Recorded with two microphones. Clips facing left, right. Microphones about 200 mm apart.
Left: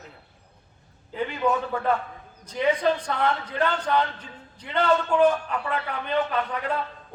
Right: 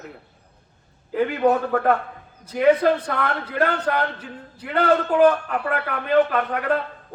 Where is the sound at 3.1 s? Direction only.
60° right (ahead or behind).